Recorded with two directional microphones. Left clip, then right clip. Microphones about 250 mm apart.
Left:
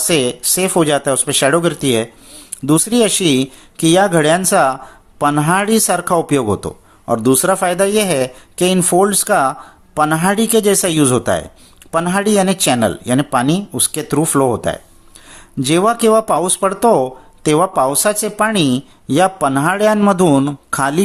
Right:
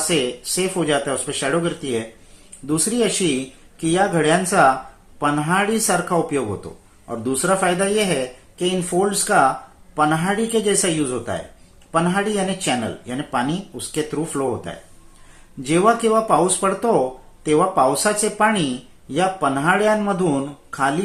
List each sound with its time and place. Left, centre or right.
0.1 s speech: left